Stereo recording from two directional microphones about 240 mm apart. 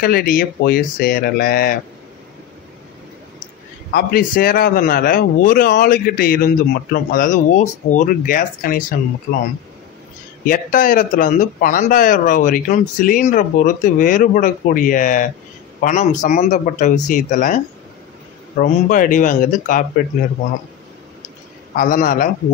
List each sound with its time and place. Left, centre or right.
0.0 s a man's voice: left
3.9 s a man's voice: left
10.4 s a man's voice: left
18.6 s a man's voice: left
21.7 s a man's voice: left